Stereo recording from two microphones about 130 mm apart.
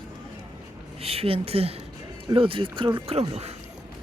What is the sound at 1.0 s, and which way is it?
Speech, 50° right (ahead or behind).